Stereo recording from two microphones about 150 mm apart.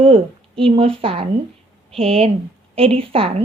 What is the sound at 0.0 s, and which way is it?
Speech, 40° right (ahead or behind).